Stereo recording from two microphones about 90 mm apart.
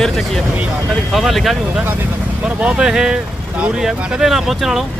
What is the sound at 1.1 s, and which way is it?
Speech, centre (ahead or behind).